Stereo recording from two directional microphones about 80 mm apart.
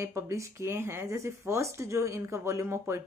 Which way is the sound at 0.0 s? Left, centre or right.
Right.